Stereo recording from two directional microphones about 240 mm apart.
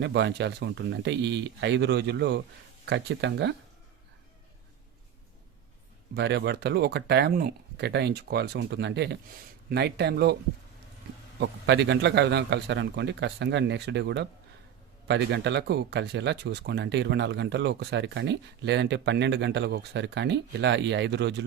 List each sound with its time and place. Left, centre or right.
0.0 s speech: right
6.1 s speech: right
11.3 s speech: right